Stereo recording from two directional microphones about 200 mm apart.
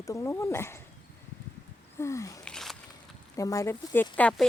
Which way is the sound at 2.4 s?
Centre (ahead or behind).